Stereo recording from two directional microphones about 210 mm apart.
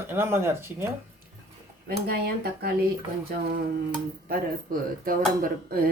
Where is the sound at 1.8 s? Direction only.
45° right (ahead or behind).